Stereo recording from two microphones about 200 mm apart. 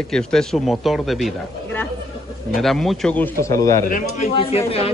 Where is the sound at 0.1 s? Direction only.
5° left (ahead or behind).